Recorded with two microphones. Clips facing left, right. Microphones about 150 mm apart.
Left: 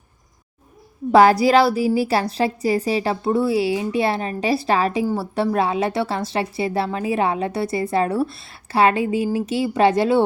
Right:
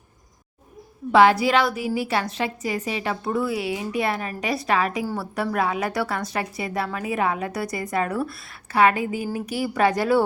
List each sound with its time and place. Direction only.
1.1 s a woman's voice: 40° left (ahead or behind); by 10.2 s 25° left (ahead or behind)